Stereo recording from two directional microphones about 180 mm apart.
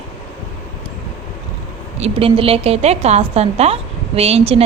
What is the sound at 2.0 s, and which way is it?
Speech, 30° right (ahead or behind).